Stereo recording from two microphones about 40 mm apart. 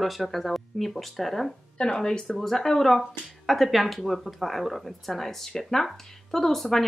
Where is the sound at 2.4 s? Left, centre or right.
Centre.